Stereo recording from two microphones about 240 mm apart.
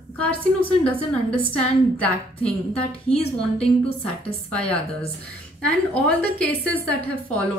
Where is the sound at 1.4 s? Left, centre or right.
Centre.